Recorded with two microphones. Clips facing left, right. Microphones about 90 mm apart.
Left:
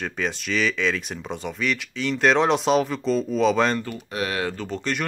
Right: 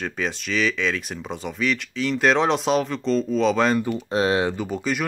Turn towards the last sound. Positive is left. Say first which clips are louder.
# right 2 dB
turn(degrees=-5)  # may be behind; listen again after turning